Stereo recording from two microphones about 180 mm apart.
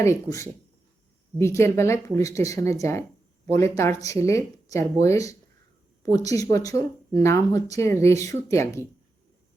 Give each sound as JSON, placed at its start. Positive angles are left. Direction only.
{"t": 0.0, "sound": "speech", "side_deg": 15}